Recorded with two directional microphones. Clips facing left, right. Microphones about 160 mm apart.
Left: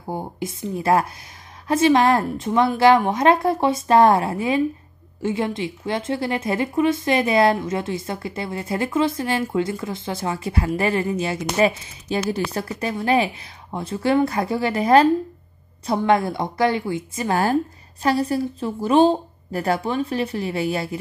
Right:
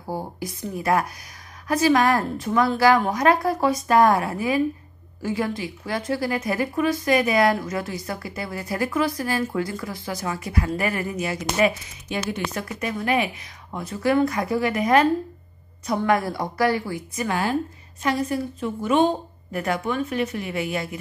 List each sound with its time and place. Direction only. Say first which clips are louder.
0.0 s a woman's voice: left 2 dB; 20° left (ahead or behind)
17.3 s a woman's voice: left 5 dB; 40° left (ahead or behind)